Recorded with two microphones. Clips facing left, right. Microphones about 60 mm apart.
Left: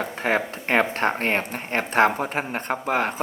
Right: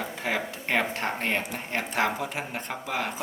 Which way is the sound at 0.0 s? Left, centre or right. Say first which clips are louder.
Left 6 dB; left.